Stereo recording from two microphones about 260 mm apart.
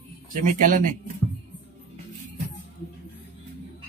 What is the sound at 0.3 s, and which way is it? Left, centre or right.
Speech, right.